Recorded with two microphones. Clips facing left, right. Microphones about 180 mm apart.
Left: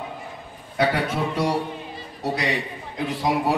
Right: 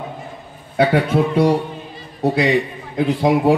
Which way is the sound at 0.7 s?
55° right (ahead or behind).